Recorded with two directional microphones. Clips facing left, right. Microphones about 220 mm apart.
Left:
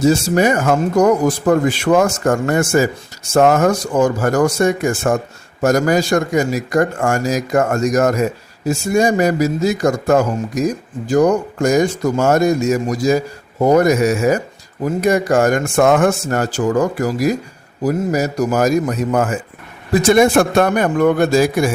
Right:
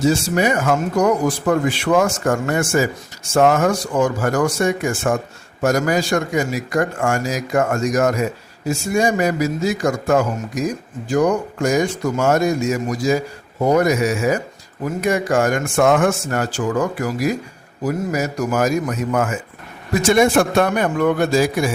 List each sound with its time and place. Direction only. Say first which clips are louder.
0.0 s a man's voice: left 4 dB; 45° left (ahead or behind)